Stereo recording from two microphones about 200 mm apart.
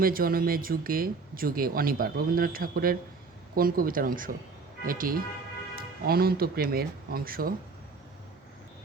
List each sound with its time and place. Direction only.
0.0 s speech: 45° right (ahead or behind)